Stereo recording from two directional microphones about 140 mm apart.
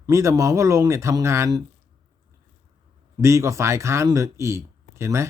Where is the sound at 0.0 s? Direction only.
20° right (ahead or behind).